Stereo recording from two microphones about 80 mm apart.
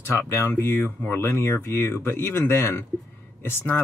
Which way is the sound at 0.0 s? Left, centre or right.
Left.